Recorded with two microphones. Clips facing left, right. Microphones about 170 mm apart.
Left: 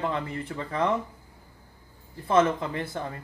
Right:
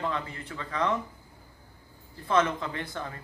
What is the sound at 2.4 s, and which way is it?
Speech, 30° left (ahead or behind).